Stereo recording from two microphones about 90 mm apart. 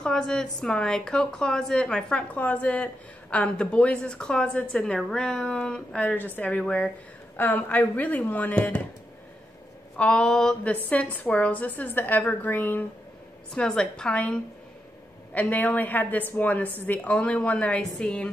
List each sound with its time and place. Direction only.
0.0 s a woman's voice: 10° left (ahead or behind)
9.9 s a woman's voice: 10° left (ahead or behind)
13.6 s a woman's voice: 10° left (ahead or behind)